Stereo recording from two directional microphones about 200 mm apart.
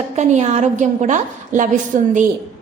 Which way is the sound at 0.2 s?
35° right (ahead or behind).